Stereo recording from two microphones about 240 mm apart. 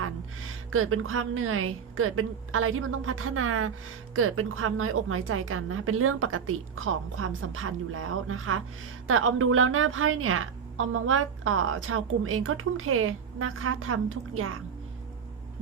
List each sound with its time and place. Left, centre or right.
0.0 s a woman's voice: right